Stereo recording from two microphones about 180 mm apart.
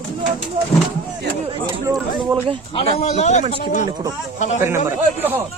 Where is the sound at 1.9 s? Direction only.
20° right (ahead or behind).